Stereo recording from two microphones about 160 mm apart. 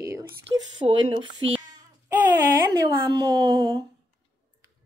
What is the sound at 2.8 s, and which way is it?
A woman's voice, 25° right (ahead or behind).